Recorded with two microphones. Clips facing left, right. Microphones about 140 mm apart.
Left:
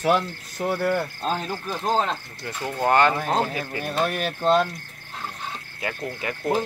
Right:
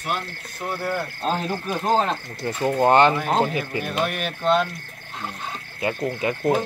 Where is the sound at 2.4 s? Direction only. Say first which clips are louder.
Right 5 dB; 25° right (ahead or behind).